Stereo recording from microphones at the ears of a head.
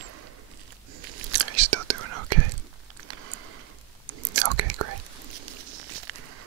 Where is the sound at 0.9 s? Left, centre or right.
Right.